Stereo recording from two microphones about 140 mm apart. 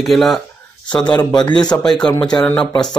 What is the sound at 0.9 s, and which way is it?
Speech, 30° left (ahead or behind).